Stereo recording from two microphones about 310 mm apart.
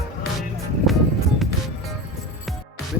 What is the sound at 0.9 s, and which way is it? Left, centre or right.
Music, centre.